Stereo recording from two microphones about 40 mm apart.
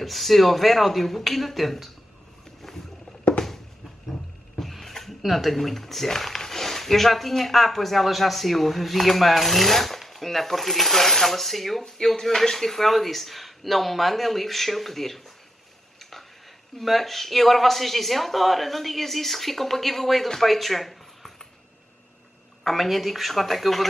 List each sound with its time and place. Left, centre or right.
0.0 s speech: centre
2.6 s rowboat: centre
4.1 s a sound: centre
5.2 s speech: centre
16.0 s tick-tock: centre
16.7 s speech: centre
22.6 s speech: centre